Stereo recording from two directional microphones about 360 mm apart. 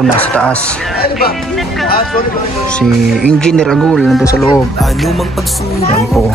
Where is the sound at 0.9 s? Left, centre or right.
Left.